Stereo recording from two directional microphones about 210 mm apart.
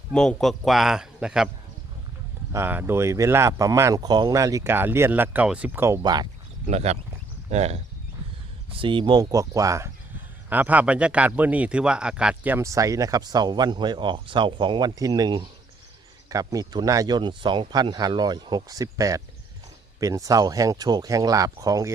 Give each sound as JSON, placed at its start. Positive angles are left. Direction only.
{"t": 0.1, "sound": "a man's voice", "side_deg": 5}
{"t": 2.5, "sound": "speech", "side_deg": -10}
{"t": 6.7, "sound": "speech", "side_deg": -30}